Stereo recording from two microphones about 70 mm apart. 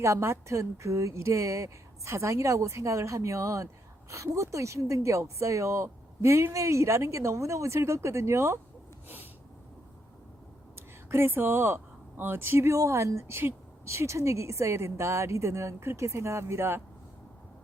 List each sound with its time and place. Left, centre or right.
0.0 s speech: right
9.0 s a sound: right
10.8 s speech: right